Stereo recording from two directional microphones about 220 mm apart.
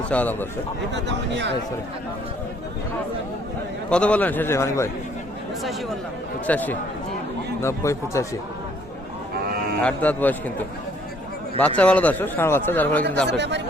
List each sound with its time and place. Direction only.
0.1 s speech: 5° left (ahead or behind)
0.9 s speech: 55° right (ahead or behind)
3.8 s speech: 5° left (ahead or behind)
6.5 s speech: 5° left (ahead or behind)
9.5 s livestock: 45° right (ahead or behind)
9.8 s speech: 5° left (ahead or behind)
11.8 s speech: 5° left (ahead or behind)
13.2 s speech: 50° right (ahead or behind)